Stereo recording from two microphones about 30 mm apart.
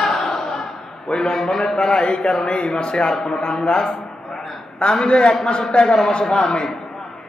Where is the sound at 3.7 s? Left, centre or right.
Centre.